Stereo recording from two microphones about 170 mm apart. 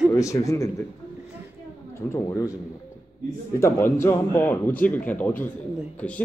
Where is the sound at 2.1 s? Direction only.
20° left (ahead or behind).